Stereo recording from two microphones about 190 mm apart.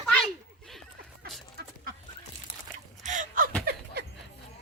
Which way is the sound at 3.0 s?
40° right (ahead or behind).